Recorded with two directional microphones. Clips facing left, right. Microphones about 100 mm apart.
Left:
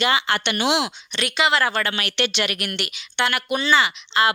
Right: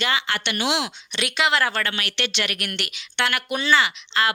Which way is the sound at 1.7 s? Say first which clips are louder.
Left 2 dB; 15° left (ahead or behind).